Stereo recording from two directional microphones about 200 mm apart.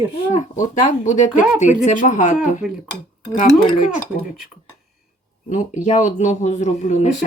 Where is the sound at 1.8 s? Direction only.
35° left (ahead or behind).